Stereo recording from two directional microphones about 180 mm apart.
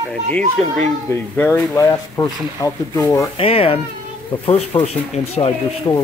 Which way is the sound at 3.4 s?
30° left (ahead or behind).